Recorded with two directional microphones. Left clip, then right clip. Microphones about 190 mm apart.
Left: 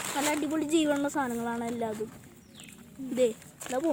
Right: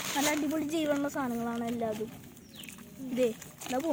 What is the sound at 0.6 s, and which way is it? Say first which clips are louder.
Speech: left 3 dB; 60° left (ahead or behind).